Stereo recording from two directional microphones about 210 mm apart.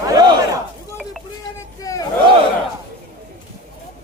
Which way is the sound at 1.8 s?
15° left (ahead or behind).